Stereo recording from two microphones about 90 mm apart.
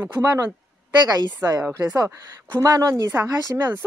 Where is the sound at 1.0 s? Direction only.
50° right (ahead or behind).